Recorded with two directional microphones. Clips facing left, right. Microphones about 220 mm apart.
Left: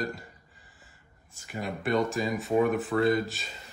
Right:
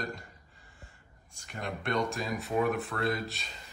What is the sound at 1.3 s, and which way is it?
Speech, 5° left (ahead or behind).